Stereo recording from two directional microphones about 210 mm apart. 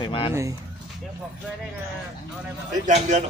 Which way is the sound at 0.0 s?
25° left (ahead or behind).